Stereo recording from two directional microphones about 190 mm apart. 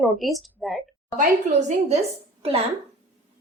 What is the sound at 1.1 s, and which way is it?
Speech, 40° right (ahead or behind).